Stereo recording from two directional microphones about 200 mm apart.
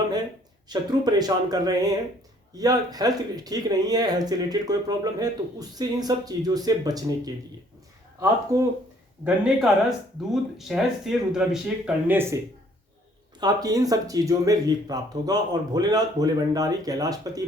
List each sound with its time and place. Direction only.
0.7 s speech: 20° right (ahead or behind)
8.5 s speech: 15° right (ahead or behind)
9.2 s speech: 5° right (ahead or behind)
13.4 s speech: 20° right (ahead or behind)